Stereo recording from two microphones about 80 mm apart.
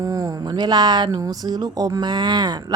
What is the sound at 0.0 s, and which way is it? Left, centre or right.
A man's voice, right.